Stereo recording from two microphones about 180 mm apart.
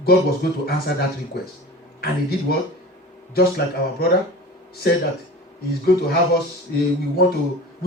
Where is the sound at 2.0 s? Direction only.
60° left (ahead or behind).